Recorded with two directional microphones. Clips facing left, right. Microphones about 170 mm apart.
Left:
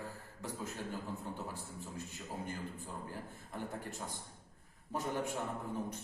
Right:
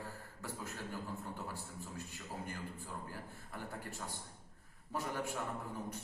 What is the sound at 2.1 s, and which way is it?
A man's voice, 20° left (ahead or behind).